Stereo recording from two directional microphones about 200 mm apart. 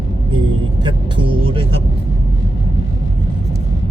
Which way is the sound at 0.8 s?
25° right (ahead or behind).